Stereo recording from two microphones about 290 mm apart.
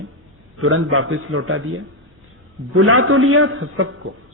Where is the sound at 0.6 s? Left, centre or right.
Right.